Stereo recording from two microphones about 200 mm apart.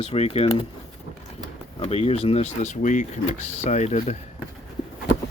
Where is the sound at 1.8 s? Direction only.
30° left (ahead or behind).